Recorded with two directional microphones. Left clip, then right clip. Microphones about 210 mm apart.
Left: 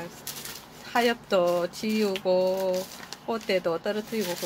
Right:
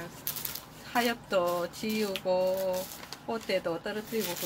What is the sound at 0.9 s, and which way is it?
Speech, 40° left (ahead or behind).